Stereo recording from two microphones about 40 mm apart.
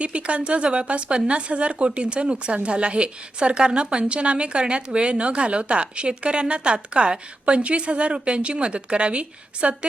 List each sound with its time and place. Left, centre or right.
0.0 s a woman's voice: right